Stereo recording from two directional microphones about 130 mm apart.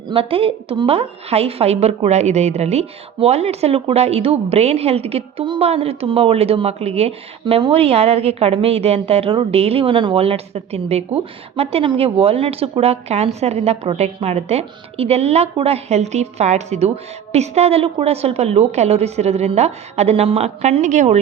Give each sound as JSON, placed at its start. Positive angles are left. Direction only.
{"t": 0.1, "sound": "a woman's voice", "side_deg": -45}